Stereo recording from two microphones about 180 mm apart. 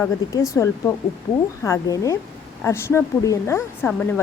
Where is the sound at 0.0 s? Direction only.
15° left (ahead or behind).